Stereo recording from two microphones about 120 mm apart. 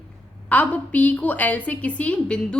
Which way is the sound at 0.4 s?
10° left (ahead or behind).